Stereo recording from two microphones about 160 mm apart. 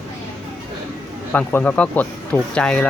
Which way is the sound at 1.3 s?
10° left (ahead or behind).